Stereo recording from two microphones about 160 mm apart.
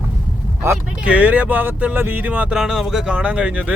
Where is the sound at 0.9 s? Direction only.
10° right (ahead or behind).